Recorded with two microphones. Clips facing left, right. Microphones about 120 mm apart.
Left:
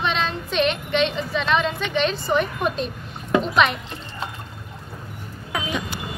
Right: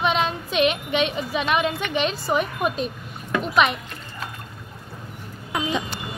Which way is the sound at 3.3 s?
25° left (ahead or behind).